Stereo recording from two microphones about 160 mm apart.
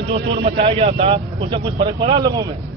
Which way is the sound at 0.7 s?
35° right (ahead or behind).